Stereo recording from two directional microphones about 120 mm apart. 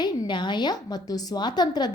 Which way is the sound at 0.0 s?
40° left (ahead or behind).